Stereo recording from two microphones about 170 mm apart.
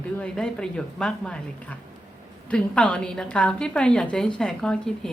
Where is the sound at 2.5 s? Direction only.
5° left (ahead or behind).